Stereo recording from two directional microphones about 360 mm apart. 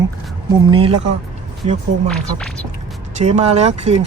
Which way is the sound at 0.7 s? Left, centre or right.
Centre.